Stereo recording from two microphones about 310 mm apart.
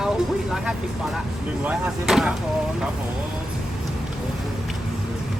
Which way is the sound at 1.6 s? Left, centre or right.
Centre.